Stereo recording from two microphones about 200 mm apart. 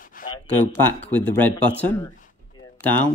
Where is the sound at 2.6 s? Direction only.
25° left (ahead or behind).